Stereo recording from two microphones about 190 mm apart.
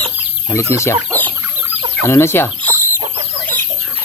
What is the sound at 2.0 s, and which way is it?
Speech, 15° left (ahead or behind).